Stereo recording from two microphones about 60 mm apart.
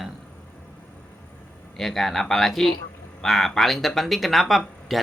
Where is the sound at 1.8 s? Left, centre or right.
Centre.